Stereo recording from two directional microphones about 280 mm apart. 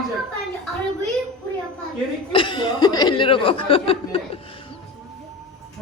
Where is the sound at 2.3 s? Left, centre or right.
Centre.